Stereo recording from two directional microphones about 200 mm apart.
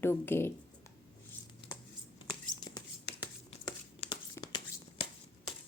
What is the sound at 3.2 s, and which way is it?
Tearing, 25° left (ahead or behind).